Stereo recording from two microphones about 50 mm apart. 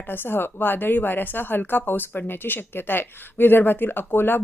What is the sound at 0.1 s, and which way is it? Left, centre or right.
Speech, left.